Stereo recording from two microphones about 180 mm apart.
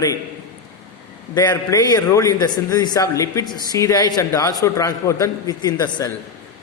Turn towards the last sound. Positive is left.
turn(degrees=20)  # may be behind; listen again after turning